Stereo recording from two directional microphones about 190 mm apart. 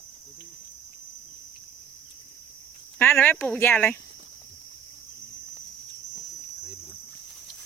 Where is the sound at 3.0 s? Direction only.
10° left (ahead or behind).